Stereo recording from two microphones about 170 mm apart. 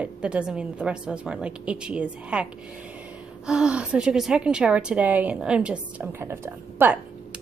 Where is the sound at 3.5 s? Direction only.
5° right (ahead or behind).